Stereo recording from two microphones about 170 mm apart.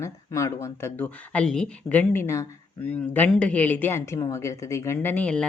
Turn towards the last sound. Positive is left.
turn(degrees=10)  # may be behind; listen again after turning